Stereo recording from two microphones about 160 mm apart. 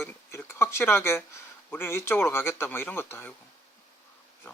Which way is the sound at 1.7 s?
15° left (ahead or behind).